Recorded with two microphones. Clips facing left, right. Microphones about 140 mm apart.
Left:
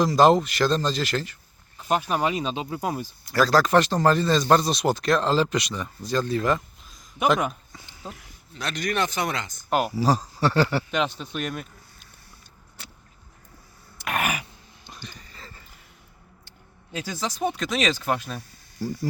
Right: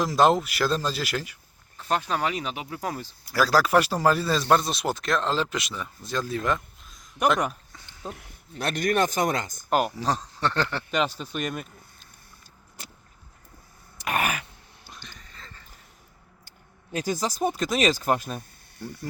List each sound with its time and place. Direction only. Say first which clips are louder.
0.0 s speech: left 3 dB; centre (ahead or behind)
1.8 s speech: left 2 dB; 10° left (ahead or behind)
3.2 s speech: left 2 dB; 5° right (ahead or behind)
8.1 s speech: right 3 dB; 55° right (ahead or behind)
9.6 s speech: left 3 dB; centre (ahead or behind)
14.1 s dog: even; 5° left (ahead or behind)
14.8 s a sound: left 4 dB; centre (ahead or behind)
16.9 s speech: right 3 dB; 45° right (ahead or behind)